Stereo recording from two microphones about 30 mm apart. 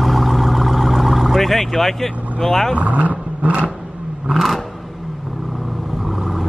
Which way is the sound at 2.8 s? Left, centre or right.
Right.